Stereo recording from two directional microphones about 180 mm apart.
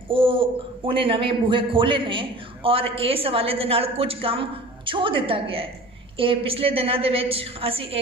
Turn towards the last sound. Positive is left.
turn(degrees=-30)  # may be behind; listen again after turning